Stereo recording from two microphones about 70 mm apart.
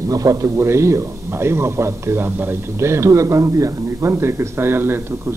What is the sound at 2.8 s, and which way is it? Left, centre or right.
A man's voice, right.